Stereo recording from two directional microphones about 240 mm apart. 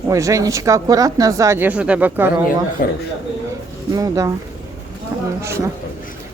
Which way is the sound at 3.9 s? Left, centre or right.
Centre.